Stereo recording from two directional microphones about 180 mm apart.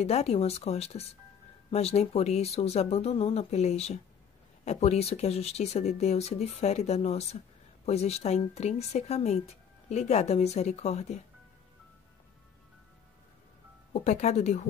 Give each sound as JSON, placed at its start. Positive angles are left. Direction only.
{"t": 0.0, "sound": "a woman's voice", "side_deg": 35}
{"t": 14.0, "sound": "a woman's voice", "side_deg": 40}